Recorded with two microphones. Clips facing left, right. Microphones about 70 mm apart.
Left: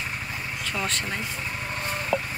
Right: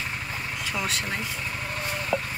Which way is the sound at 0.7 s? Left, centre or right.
Centre.